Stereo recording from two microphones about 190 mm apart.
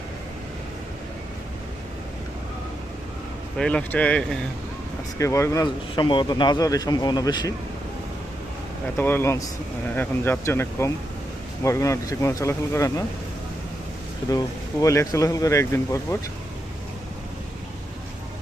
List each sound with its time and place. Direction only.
3.6 s speech: 5° left (ahead or behind)
5.1 s speech: 15° left (ahead or behind)
9.0 s speech: 10° left (ahead or behind)
14.3 s speech: 20° left (ahead or behind)